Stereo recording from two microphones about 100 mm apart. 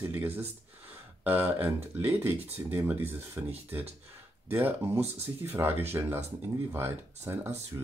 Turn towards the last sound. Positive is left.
turn(degrees=-25)  # may be behind; listen again after turning